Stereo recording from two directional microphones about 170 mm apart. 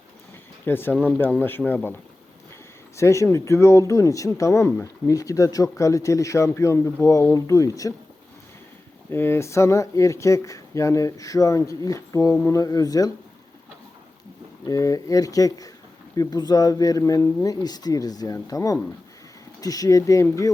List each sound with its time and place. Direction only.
0.6 s speech: 10° left (ahead or behind)
9.0 s speech: 15° left (ahead or behind)
14.7 s speech: 20° left (ahead or behind)